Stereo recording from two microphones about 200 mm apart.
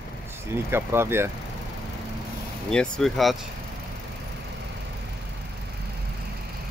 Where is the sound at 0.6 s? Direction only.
10° right (ahead or behind).